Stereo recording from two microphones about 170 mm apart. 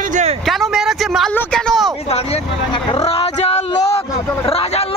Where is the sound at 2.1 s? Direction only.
35° left (ahead or behind).